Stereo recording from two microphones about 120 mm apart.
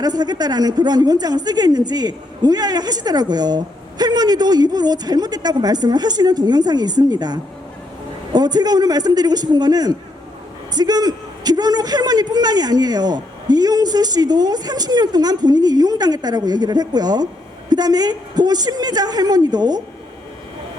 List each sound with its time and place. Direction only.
0.0 s a woman's voice: 35° right (ahead or behind)